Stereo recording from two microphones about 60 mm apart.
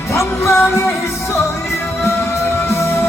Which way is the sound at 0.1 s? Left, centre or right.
Left.